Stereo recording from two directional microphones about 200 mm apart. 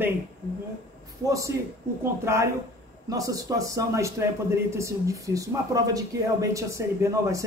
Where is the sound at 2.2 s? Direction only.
15° right (ahead or behind).